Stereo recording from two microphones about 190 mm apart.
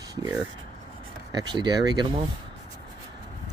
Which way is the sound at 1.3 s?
25° right (ahead or behind).